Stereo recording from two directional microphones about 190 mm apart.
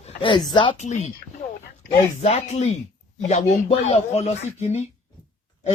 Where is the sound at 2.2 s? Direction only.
35° left (ahead or behind).